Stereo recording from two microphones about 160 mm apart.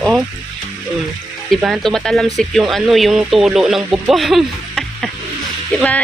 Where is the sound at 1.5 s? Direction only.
Centre (ahead or behind).